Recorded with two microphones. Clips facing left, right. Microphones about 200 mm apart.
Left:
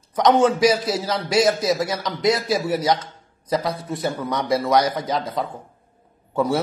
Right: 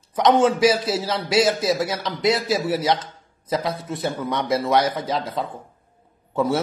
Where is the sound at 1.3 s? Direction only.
Centre (ahead or behind).